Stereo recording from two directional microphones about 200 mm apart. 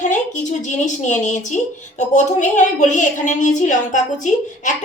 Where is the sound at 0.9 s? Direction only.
35° left (ahead or behind).